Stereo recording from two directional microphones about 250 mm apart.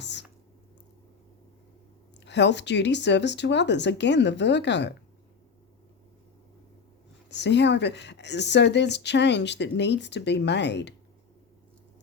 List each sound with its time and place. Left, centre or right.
0.0 s whispering: left
2.2 s speech: left
7.3 s speech: left